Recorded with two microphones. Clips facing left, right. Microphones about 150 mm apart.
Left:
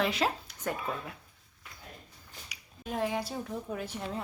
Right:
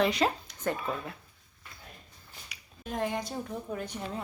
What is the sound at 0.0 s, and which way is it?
Speech, 5° left (ahead or behind).